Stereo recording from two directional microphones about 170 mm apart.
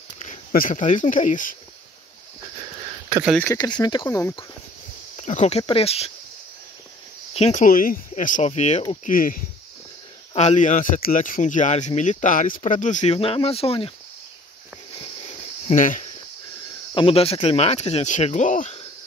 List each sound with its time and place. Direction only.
0.2 s speech: 55° left (ahead or behind)
3.5 s speech: 15° left (ahead or behind)
5.1 s speech: 45° left (ahead or behind)
5.6 s speech: 35° left (ahead or behind)
7.3 s speech: 40° left (ahead or behind)
7.6 s speech: 55° left (ahead or behind)
9.0 s speech: 55° left (ahead or behind)
10.3 s speech: 45° left (ahead or behind)
15.2 s cricket: 50° left (ahead or behind)
16.9 s speech: 35° left (ahead or behind)